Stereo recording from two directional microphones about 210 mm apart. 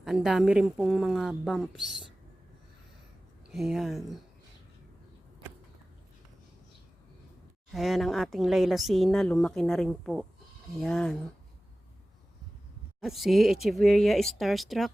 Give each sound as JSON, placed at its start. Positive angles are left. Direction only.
{"t": 0.0, "sound": "speech", "side_deg": 0}
{"t": 3.5, "sound": "speech", "side_deg": 0}
{"t": 7.7, "sound": "speech", "side_deg": 0}
{"t": 13.0, "sound": "speech", "side_deg": 0}